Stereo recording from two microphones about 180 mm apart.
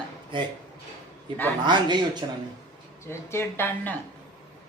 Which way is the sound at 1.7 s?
25° right (ahead or behind).